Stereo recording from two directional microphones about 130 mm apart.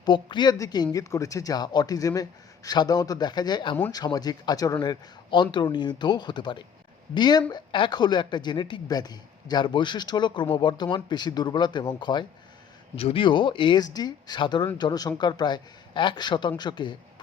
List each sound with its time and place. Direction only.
0.0 s speech: 35° left (ahead or behind)